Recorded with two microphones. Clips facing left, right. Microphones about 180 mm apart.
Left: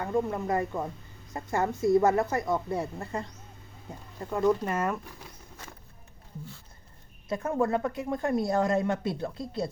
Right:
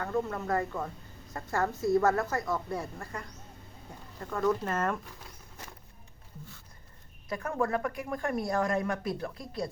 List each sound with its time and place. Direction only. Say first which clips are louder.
0.0 s a woman's voice: left 3 dB; 15° left (ahead or behind)
7.3 s a woman's voice: left 4 dB; 25° left (ahead or behind)